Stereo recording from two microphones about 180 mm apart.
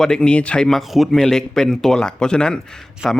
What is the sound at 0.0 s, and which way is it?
A man's voice, 5° left (ahead or behind).